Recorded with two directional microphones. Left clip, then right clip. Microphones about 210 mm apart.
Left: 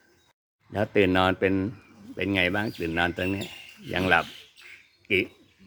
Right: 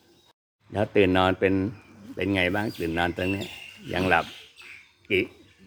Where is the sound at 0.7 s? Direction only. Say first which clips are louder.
Right 1 dB; 5° left (ahead or behind).